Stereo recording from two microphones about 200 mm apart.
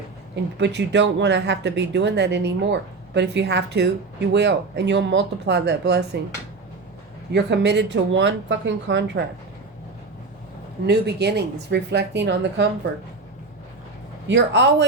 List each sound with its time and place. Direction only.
0.6 s speech: 60° right (ahead or behind)
7.3 s speech: 60° right (ahead or behind)
10.8 s speech: 55° right (ahead or behind)
14.3 s speech: 60° right (ahead or behind)